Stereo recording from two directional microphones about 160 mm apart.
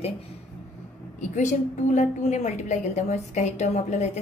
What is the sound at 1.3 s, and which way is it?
A woman's voice, 50° left (ahead or behind).